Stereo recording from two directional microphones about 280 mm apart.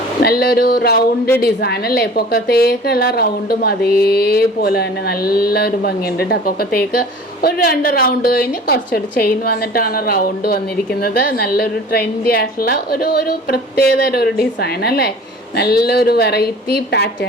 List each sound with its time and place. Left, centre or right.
0.2 s a woman's voice: left